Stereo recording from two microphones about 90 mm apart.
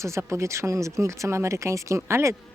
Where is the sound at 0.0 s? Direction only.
30° right (ahead or behind).